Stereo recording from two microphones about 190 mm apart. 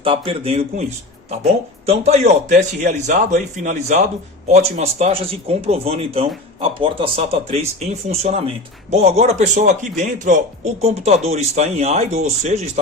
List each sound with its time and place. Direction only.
0.0 s a man's voice: 30° right (ahead or behind)
1.9 s a man's voice: 35° right (ahead or behind)